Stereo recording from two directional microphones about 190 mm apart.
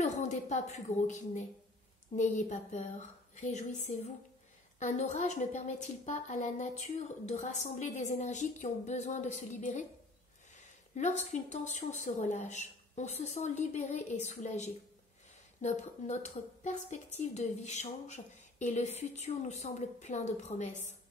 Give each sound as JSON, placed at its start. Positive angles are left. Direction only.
{"t": 0.0, "sound": "a woman's voice", "side_deg": 40}
{"t": 11.0, "sound": "speech", "side_deg": 40}